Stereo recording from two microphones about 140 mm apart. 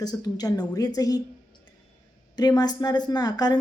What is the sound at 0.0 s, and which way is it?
Speech, 30° left (ahead or behind).